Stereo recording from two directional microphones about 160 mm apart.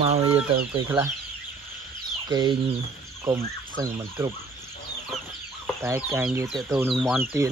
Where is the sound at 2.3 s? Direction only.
25° right (ahead or behind).